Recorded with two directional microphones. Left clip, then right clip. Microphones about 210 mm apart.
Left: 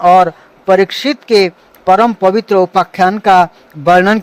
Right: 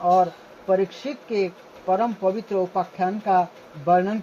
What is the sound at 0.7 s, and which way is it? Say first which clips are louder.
Speech: left 12 dB; 50° left (ahead or behind).